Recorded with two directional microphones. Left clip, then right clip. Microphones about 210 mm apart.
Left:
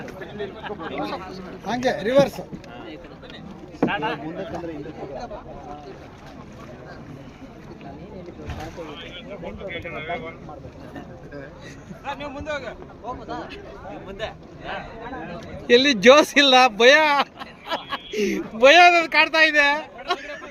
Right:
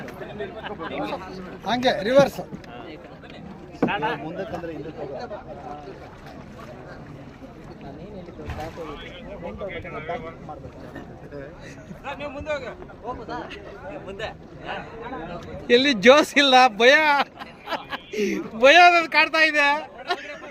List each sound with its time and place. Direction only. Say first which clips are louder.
0.6 s speech: even; 10° right (ahead or behind)
3.8 s speech: even; 15° right (ahead or behind)
8.4 s speech: right 3 dB; 5° right (ahead or behind)
12.0 s a man's voice: even; 5° left (ahead or behind)